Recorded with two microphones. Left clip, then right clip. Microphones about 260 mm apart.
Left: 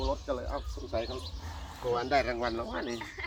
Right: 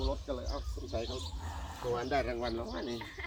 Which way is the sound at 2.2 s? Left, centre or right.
Left.